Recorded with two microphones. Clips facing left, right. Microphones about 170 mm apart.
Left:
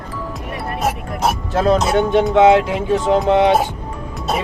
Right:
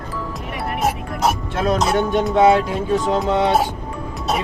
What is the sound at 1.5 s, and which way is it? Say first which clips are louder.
Speech: left 6 dB; 30° left (ahead or behind).